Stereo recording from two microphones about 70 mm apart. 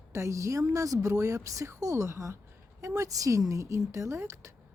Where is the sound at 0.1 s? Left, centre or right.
Right.